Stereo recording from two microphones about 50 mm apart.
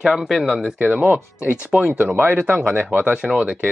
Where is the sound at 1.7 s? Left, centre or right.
Centre.